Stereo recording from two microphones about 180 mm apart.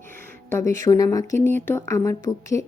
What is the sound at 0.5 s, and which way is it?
Speech, 15° left (ahead or behind).